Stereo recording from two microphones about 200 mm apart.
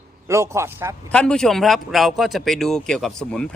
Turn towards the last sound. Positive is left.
turn(degrees=5)  # may be behind; listen again after turning